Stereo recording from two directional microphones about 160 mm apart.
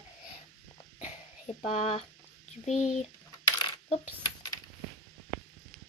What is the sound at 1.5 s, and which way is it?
Speech, 45° left (ahead or behind).